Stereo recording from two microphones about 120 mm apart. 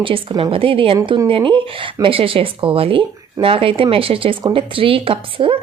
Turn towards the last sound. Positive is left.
turn(degrees=-50)  # may be behind; listen again after turning